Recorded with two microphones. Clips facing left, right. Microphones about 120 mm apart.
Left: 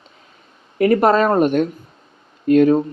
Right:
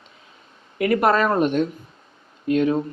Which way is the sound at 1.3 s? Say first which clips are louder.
Left 4 dB; 50° left (ahead or behind).